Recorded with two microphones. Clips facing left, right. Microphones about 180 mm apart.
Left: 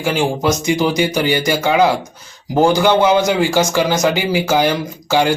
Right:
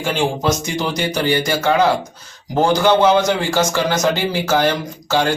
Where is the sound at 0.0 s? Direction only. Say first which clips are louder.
Left 2 dB; 10° left (ahead or behind).